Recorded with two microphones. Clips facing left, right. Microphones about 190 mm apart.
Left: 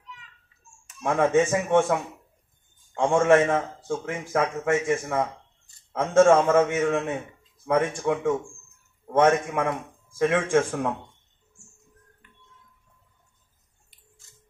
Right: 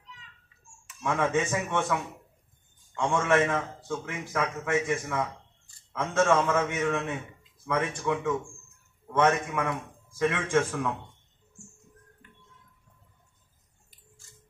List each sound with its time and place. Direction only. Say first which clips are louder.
0.8 s a man's voice: left 5 dB; 45° left (ahead or behind)